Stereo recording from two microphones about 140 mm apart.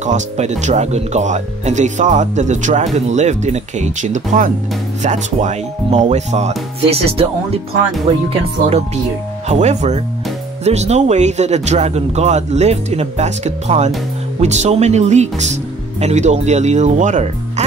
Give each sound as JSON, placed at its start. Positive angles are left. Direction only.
{"t": 0.0, "sound": "speech", "side_deg": -55}